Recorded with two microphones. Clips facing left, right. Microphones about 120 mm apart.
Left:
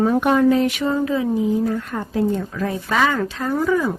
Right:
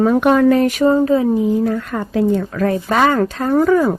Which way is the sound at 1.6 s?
90° right.